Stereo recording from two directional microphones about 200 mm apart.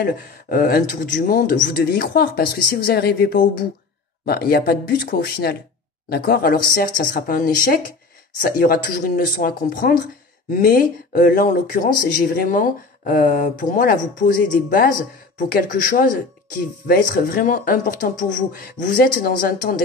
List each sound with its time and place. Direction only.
0.0 s speech: 45° left (ahead or behind)